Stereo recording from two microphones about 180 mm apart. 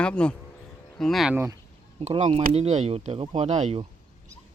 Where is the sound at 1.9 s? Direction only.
35° right (ahead or behind).